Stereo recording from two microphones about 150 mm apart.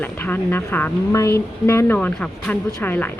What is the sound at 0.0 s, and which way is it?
Speech, 10° left (ahead or behind).